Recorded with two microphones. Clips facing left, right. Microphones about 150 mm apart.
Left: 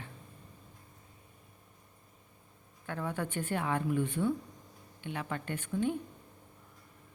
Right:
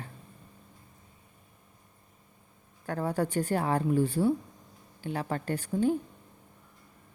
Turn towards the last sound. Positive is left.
turn(degrees=-35)  # may be behind; listen again after turning